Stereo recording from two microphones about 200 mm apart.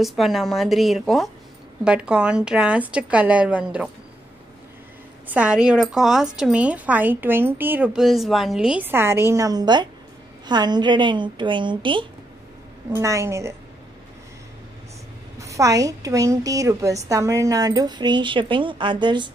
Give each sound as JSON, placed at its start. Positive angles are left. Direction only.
{"t": 0.0, "sound": "a woman's voice", "side_deg": 0}
{"t": 5.3, "sound": "a woman's voice", "side_deg": -5}
{"t": 15.3, "sound": "a woman's voice", "side_deg": -15}